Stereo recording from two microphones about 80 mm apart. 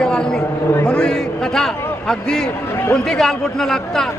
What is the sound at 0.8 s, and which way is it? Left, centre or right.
A man's voice, centre.